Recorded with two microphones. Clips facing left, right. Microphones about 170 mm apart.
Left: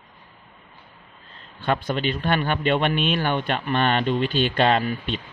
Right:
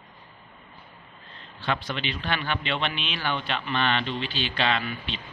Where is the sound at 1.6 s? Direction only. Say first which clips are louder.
Left 6 dB; 50° left (ahead or behind).